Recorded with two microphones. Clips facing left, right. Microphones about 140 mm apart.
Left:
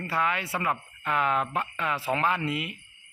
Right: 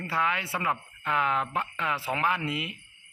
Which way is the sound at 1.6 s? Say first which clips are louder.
Left 1 dB; 15° right (ahead or behind).